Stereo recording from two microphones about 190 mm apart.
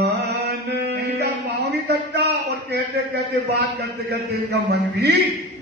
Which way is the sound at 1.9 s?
60° right (ahead or behind).